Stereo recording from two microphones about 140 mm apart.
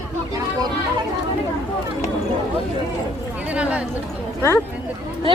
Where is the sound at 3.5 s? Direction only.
10° right (ahead or behind).